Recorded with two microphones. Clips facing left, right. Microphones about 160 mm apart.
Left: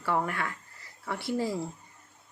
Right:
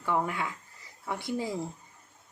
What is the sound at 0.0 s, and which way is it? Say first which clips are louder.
Speech: even; 15° right (ahead or behind).